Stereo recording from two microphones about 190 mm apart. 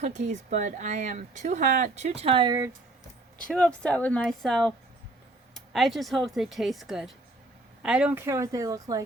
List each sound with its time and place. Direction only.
0.0 s speech: 35° right (ahead or behind)
3.5 s speech: 5° left (ahead or behind); by 9.0 s 20° right (ahead or behind)